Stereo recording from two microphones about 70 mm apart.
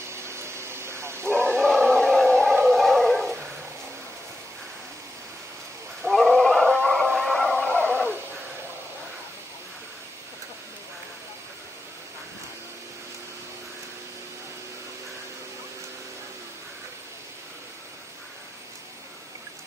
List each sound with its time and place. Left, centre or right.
0.1 s bow-wow: right
1.6 s a sound: centre
2.7 s dog: centre
6.0 s dog: centre
7.2 s a sound: centre
7.5 s dog: left